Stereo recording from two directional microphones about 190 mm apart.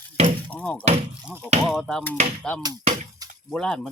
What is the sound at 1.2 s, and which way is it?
Speech, 10° right (ahead or behind).